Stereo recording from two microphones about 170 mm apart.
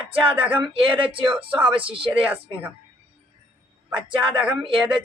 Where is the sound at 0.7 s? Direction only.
30° right (ahead or behind).